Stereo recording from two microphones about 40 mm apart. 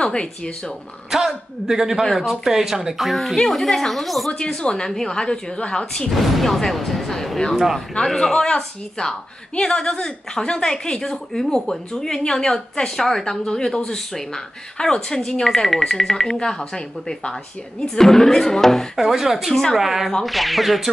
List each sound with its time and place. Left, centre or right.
0.0 s a woman's voice: left
1.1 s speech: centre
4.5 s a woman's voice: centre
6.0 s speech: centre
7.5 s speech: centre
8.0 s speech: centre
18.9 s speech: centre